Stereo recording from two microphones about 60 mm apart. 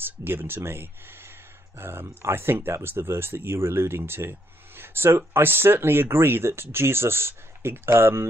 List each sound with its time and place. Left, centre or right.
0.0 s speech: right